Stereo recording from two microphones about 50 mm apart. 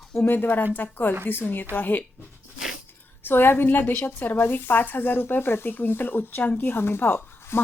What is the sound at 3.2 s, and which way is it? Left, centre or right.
A woman's voice, left.